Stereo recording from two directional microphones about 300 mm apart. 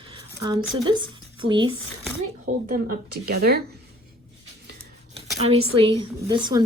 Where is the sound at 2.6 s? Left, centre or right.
Right.